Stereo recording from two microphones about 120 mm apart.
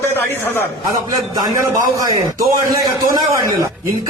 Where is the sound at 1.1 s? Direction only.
30° right (ahead or behind).